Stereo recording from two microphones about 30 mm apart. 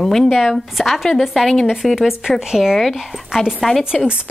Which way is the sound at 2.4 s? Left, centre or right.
Centre.